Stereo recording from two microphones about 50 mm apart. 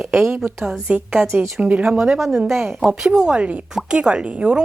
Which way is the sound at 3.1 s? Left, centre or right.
Centre.